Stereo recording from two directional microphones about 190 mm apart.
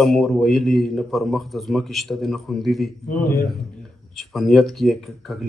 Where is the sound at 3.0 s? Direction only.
45° left (ahead or behind).